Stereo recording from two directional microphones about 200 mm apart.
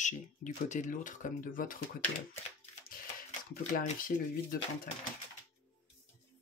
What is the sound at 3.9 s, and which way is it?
Speech, 45° left (ahead or behind).